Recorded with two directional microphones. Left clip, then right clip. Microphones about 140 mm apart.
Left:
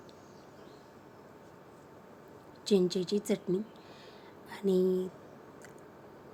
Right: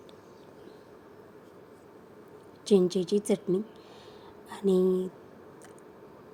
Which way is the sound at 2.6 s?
15° right (ahead or behind).